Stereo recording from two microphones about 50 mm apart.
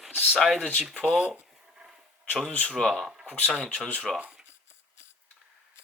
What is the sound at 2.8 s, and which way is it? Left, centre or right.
Speech, centre.